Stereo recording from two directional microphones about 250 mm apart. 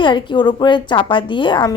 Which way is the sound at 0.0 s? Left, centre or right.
Centre.